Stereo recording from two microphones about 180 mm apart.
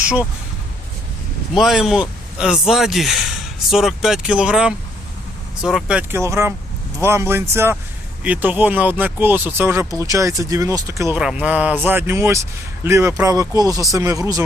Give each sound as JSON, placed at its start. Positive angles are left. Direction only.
{"t": 1.5, "sound": "speech", "side_deg": 0}